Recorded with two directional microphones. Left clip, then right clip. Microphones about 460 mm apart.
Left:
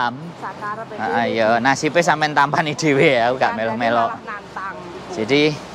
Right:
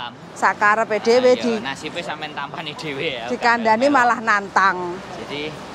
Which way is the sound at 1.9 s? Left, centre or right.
Left.